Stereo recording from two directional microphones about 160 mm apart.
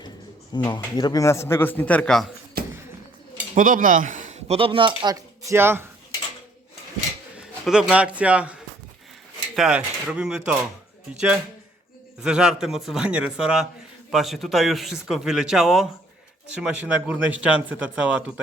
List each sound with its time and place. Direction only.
0.5 s a man's voice: 30° left (ahead or behind); by 2.2 s 5° left (ahead or behind)
3.5 s speech: 55° right (ahead or behind); by 5.1 s 30° right (ahead or behind)
5.5 s speech: 15° right (ahead or behind)
7.3 s a man's voice: 5° right (ahead or behind)
9.6 s speech: 5° right (ahead or behind)